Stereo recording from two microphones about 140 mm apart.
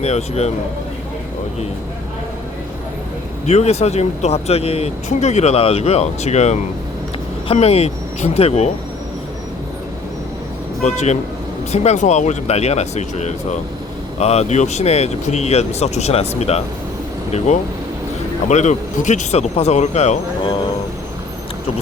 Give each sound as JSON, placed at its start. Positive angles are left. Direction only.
{"t": 0.0, "sound": "speech", "side_deg": 50}
{"t": 3.4, "sound": "speech", "side_deg": 50}
{"t": 10.8, "sound": "speech", "side_deg": 55}